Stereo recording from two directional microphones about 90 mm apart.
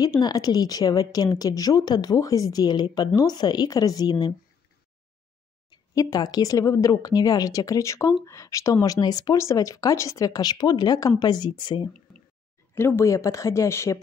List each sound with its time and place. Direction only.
0.2 s a woman's voice: 45° left (ahead or behind)
5.9 s a woman's voice: 40° left (ahead or behind)
9.4 s a woman's voice: 35° left (ahead or behind); by 11.9 s 55° left (ahead or behind)
12.7 s speech: 30° left (ahead or behind)